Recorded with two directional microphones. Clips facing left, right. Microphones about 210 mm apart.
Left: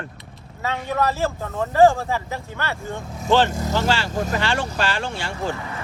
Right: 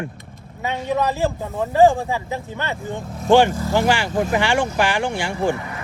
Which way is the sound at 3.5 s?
20° left (ahead or behind).